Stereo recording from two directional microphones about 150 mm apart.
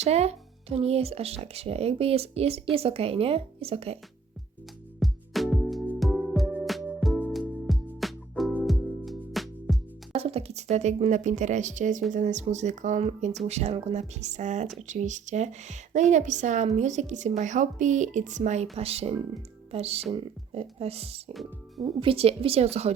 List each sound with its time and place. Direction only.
0.0 s a woman's voice: 45° right (ahead or behind)
4.9 s music: centre (ahead or behind)
6.0 s music: centre (ahead or behind)
10.1 s a woman's voice: 40° right (ahead or behind)
21.3 s speech: centre (ahead or behind)
22.0 s a woman's voice: 40° right (ahead or behind)